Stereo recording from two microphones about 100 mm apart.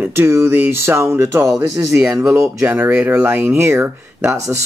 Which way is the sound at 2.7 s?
20° right (ahead or behind).